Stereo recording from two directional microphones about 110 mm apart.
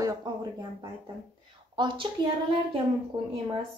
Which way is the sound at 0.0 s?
35° right (ahead or behind).